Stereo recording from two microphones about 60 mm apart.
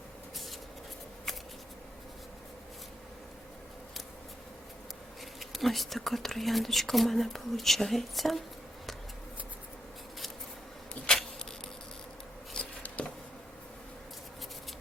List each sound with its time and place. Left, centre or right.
5.4 s speech: centre
11.0 s insect: centre
12.6 s a sound: centre